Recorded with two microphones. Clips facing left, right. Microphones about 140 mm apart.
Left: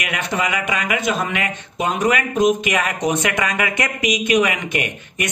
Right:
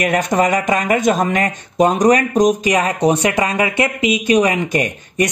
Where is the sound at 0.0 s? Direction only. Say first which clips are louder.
Right 8 dB; 45° right (ahead or behind).